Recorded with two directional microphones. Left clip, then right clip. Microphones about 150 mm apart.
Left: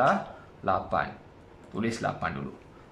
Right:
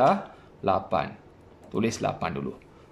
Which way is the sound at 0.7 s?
20° right (ahead or behind).